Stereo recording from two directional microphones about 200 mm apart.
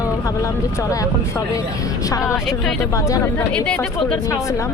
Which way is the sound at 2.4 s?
5° right (ahead or behind).